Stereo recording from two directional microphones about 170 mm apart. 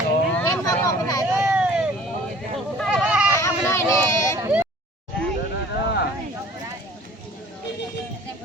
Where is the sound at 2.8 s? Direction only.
5° right (ahead or behind).